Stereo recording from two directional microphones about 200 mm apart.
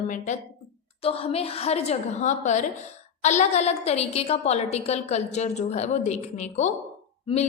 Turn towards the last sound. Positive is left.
turn(degrees=30)  # may be behind; listen again after turning